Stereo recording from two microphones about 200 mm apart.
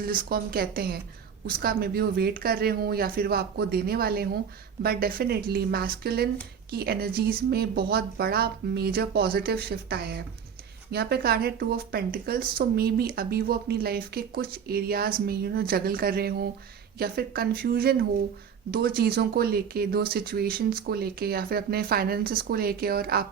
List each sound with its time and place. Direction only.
0.0 s speech: 45° right (ahead or behind)